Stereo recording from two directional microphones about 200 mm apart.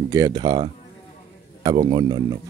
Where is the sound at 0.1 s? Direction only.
20° right (ahead or behind).